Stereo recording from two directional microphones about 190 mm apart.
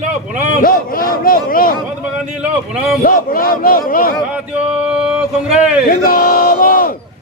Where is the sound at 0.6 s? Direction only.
50° left (ahead or behind).